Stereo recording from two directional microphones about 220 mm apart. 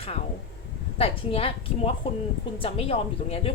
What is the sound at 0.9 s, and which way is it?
A woman's voice, 25° left (ahead or behind).